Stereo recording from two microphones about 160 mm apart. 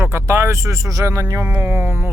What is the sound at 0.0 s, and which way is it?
Speech, 15° right (ahead or behind).